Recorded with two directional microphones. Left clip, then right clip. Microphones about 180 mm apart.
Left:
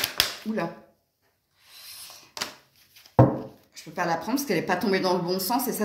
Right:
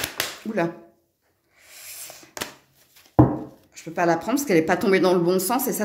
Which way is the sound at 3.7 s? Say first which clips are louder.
Right 6 dB; 60° right (ahead or behind).